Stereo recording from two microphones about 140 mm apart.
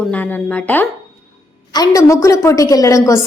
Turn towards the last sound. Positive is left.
turn(degrees=25)  # may be behind; listen again after turning